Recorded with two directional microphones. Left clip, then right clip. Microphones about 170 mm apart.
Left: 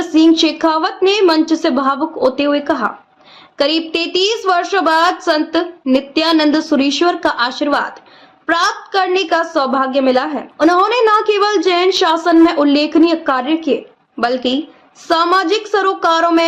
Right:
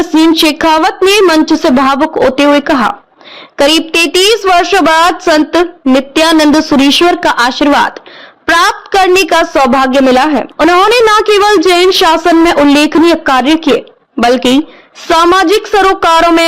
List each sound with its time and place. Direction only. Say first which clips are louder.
0.0 s a woman's voice: right 4 dB; 55° right (ahead or behind)